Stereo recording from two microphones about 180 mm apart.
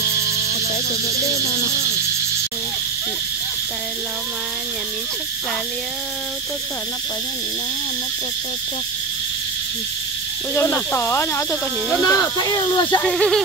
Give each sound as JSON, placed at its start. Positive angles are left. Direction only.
{"t": 10.5, "sound": "speech", "side_deg": 10}
{"t": 13.0, "sound": "speech", "side_deg": 5}